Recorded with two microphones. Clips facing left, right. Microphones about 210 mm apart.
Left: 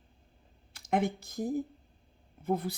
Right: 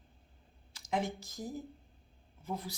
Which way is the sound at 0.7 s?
55° left (ahead or behind).